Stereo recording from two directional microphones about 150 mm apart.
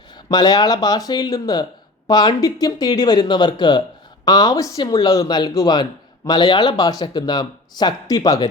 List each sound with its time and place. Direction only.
0.3 s speech: 25° left (ahead or behind)